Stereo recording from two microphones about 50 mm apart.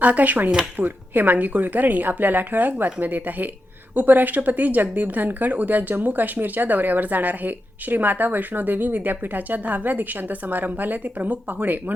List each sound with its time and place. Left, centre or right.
0.0 s speech: right